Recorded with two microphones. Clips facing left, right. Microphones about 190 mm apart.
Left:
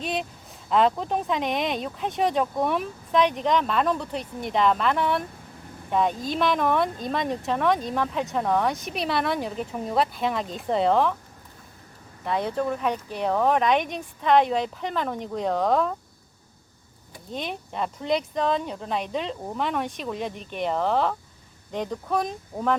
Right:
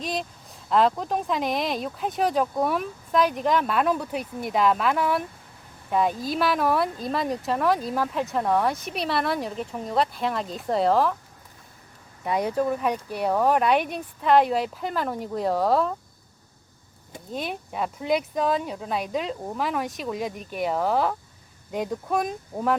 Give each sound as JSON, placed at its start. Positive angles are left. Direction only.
{"t": 0.0, "sound": "a sound", "side_deg": 0}
{"t": 0.7, "sound": "speech", "side_deg": 0}
{"t": 12.2, "sound": "speech", "side_deg": -10}
{"t": 17.3, "sound": "speech", "side_deg": -5}